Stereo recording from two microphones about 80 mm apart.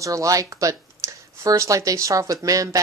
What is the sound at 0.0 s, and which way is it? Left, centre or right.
Speech, right.